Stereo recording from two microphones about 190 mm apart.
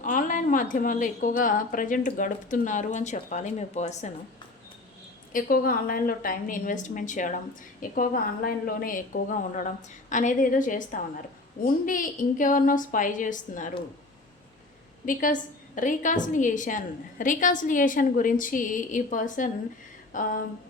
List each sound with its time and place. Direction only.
0.0 s a woman's voice: 45° left (ahead or behind)
5.3 s a woman's voice: 50° left (ahead or behind)
15.0 s a woman's voice: 45° left (ahead or behind)